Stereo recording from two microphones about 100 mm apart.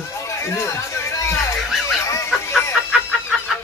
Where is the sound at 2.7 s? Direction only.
5° right (ahead or behind).